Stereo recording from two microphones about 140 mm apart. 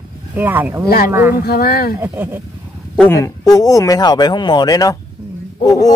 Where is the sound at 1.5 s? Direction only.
90° left.